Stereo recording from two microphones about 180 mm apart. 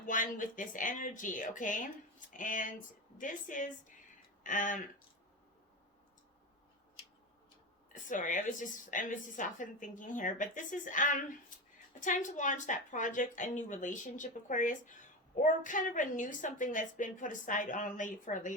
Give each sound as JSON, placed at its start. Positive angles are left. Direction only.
{"t": 0.0, "sound": "a woman's voice", "side_deg": 45}
{"t": 7.9, "sound": "a woman's voice", "side_deg": 45}